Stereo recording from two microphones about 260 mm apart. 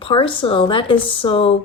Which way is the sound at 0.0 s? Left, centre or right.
Centre.